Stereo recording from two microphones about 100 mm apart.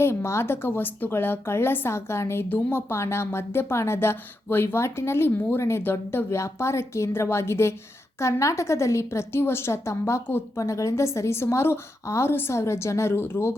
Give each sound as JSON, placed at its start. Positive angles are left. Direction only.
{"t": 0.0, "sound": "speech", "side_deg": 25}